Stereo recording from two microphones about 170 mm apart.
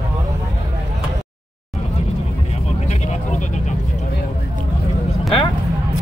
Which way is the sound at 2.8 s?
40° left (ahead or behind).